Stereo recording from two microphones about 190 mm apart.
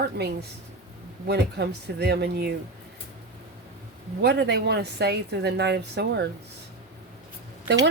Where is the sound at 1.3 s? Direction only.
60° right (ahead or behind).